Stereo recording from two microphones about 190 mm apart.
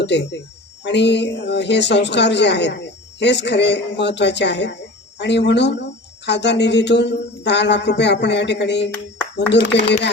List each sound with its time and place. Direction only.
0.0 s speech: 65° left (ahead or behind)